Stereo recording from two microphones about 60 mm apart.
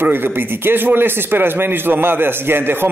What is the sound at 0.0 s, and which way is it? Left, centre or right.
Speech, right.